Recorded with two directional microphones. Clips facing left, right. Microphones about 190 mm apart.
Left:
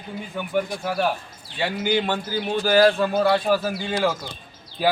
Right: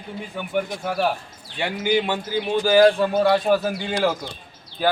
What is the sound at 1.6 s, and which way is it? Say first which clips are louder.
A man's voice: right 1 dB; 10° right (ahead or behind).